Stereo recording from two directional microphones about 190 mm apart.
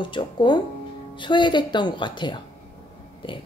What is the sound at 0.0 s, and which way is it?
Speech, 25° left (ahead or behind).